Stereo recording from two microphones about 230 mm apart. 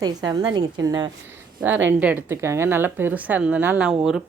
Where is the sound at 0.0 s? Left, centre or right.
Centre.